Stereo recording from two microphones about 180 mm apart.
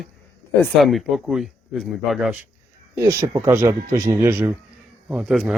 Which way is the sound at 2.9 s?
15° right (ahead or behind).